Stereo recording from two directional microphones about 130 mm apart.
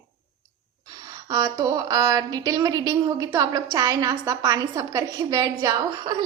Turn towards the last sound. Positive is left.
turn(degrees=-35)  # may be behind; listen again after turning